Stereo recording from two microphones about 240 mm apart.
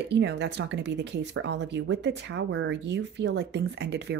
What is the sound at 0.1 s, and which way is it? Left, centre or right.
Speech, right.